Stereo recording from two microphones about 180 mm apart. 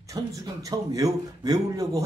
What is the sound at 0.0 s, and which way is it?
A man's voice, 20° right (ahead or behind).